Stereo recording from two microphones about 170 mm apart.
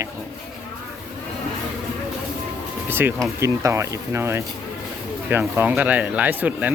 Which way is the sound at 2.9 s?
15° right (ahead or behind).